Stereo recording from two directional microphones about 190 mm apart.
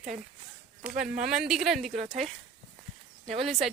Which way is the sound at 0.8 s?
5° right (ahead or behind).